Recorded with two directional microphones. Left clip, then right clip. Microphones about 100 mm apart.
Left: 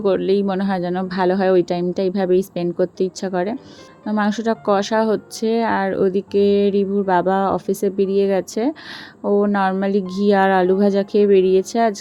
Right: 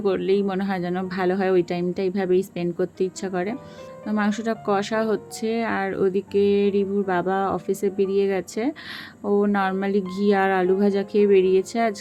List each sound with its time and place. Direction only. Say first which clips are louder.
0.0 s speech: left 4 dB; 30° left (ahead or behind)